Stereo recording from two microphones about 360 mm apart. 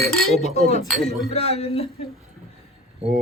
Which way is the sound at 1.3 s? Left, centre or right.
Centre.